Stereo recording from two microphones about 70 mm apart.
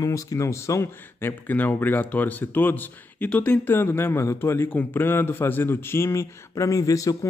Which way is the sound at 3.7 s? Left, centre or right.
Left.